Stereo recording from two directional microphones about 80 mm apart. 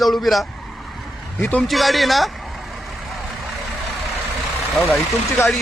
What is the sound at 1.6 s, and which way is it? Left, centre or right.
Speech, centre.